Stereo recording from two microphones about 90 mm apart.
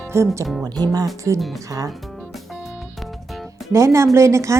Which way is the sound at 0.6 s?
45° right (ahead or behind).